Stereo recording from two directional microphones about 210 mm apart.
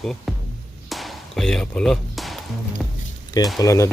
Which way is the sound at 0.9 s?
Centre (ahead or behind).